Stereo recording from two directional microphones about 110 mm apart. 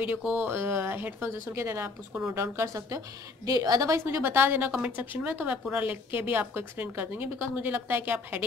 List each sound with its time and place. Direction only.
0.0 s a woman's voice: 15° right (ahead or behind)